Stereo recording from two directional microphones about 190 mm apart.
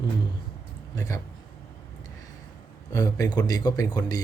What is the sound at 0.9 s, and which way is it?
Speech, 15° left (ahead or behind).